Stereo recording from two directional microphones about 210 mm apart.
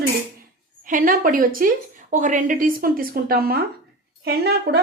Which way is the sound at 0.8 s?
40° right (ahead or behind).